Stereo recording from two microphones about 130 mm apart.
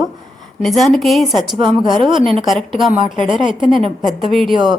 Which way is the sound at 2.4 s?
Centre (ahead or behind).